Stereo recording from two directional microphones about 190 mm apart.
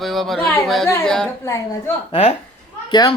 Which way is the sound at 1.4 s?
15° left (ahead or behind).